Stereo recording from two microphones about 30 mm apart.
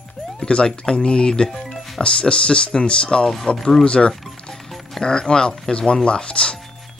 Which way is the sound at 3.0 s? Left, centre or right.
Centre.